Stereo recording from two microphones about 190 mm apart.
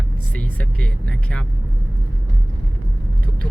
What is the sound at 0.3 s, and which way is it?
Speech, 5° left (ahead or behind).